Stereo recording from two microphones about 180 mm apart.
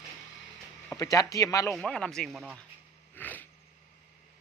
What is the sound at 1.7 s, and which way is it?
Speech, 5° left (ahead or behind).